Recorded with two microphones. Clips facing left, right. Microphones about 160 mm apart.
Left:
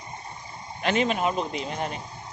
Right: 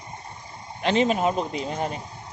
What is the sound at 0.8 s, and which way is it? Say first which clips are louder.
Speech: right 3 dB; 30° right (ahead or behind).